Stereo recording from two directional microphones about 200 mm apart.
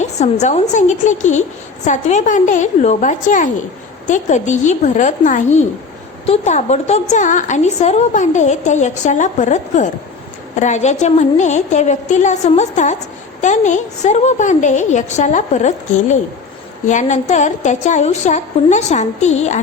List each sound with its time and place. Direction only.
0.0 s a woman's voice: 35° left (ahead or behind)